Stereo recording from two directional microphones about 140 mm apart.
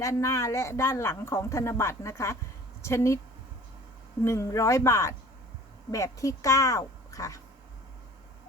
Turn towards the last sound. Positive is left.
turn(degrees=25)  # may be behind; listen again after turning